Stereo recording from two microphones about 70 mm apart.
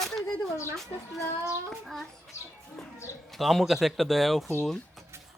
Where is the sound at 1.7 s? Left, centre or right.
Centre.